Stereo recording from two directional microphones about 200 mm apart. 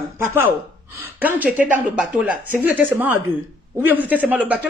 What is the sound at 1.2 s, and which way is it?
A woman's voice, 10° right (ahead or behind).